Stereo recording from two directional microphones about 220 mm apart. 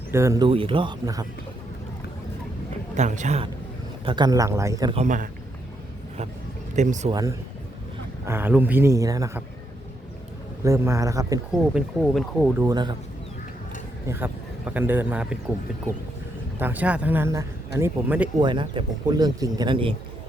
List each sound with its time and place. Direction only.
0.1 s speech: 15° right (ahead or behind)
2.9 s a man's voice: 30° right (ahead or behind)
4.0 s speech: 20° right (ahead or behind)
4.9 s a man's voice: 35° right (ahead or behind)
6.7 s a man's voice: 35° right (ahead or behind)
7.1 s speech: 15° right (ahead or behind)
10.6 s speech: 15° right (ahead or behind)
11.7 s speech: centre (ahead or behind)
12.5 s speech: 15° right (ahead or behind)
14.1 s a man's voice: 10° right (ahead or behind)
16.6 s speech: 10° right (ahead or behind)
18.3 s speech: 20° right (ahead or behind)